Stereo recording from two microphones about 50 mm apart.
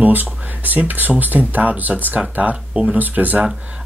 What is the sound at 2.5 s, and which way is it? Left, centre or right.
Speech, right.